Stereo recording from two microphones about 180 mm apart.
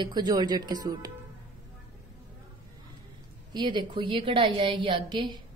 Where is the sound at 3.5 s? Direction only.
25° right (ahead or behind).